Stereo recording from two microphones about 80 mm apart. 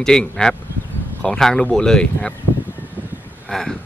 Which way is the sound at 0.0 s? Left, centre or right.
Centre.